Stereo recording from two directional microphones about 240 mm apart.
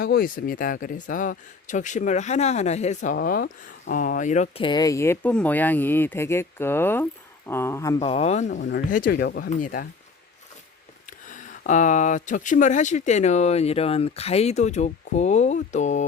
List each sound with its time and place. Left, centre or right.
0.0 s speech: left; by 8.0 s centre
8.0 s speech: left
8.7 s speech: left
11.3 s speech: left